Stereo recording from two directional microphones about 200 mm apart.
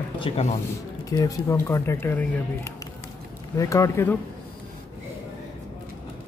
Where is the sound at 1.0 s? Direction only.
15° left (ahead or behind).